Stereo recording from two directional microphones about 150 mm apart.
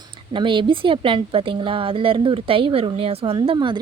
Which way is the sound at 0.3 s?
35° right (ahead or behind).